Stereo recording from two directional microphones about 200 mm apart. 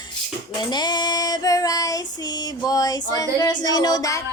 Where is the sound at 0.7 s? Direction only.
20° left (ahead or behind).